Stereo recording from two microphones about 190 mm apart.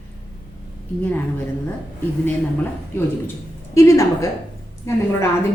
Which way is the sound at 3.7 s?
15° left (ahead or behind).